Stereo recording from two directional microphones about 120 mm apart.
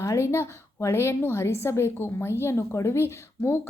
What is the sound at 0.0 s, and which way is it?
A woman's voice, 25° left (ahead or behind).